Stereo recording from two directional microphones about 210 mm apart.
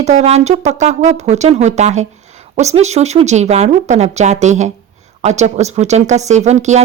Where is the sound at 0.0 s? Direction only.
30° right (ahead or behind).